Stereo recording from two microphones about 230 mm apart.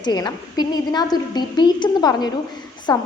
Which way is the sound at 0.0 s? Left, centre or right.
Centre.